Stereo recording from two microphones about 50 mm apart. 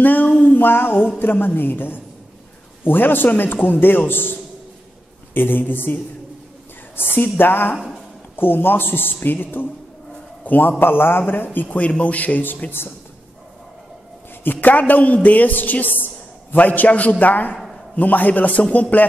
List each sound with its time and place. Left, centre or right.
0.0 s music: left
1.2 s a woman's voice: left
7.0 s a woman's voice: left
7.7 s speech: centre
8.4 s a woman's voice: left
11.6 s a man's voice: left
14.4 s a man's voice: left